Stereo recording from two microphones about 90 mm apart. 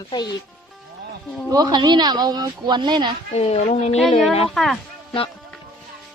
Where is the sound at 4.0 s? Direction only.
Centre (ahead or behind).